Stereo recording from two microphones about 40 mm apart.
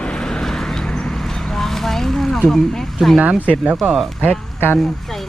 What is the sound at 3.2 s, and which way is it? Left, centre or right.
Speech, right.